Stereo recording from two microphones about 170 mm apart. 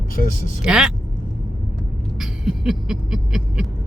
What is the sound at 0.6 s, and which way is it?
Speech, 5° right (ahead or behind).